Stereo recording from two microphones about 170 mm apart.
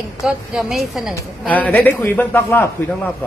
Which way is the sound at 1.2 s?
10° left (ahead or behind).